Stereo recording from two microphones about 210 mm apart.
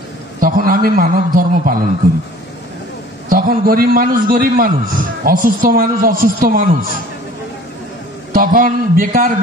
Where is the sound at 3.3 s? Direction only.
45° right (ahead or behind).